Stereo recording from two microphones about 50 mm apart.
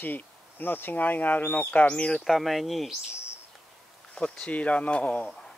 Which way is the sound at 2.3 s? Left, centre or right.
Centre.